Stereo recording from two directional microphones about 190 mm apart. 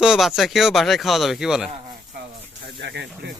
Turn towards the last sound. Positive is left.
turn(degrees=-65)  # may be behind; listen again after turning